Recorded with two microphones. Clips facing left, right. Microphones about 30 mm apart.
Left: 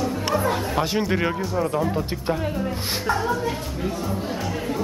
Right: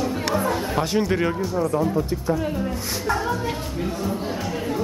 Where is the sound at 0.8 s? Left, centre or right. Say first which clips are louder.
Right 2 dB; centre.